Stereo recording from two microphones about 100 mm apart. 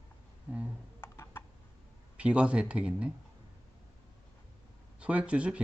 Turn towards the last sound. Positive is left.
turn(degrees=-10)  # may be behind; listen again after turning